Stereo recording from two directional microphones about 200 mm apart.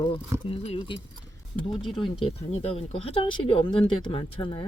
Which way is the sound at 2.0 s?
25° left (ahead or behind).